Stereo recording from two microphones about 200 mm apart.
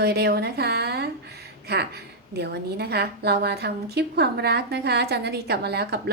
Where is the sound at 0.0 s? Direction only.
55° right (ahead or behind).